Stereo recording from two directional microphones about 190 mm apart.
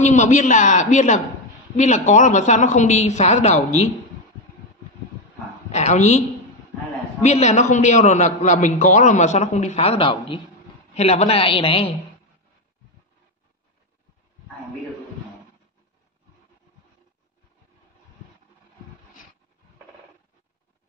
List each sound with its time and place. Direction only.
0.0 s a man's voice: 40° left (ahead or behind)
5.7 s speech: 35° left (ahead or behind)
7.2 s a man's voice: 35° left (ahead or behind)